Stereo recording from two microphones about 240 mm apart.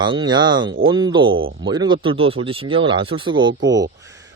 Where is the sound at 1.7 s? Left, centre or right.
Centre.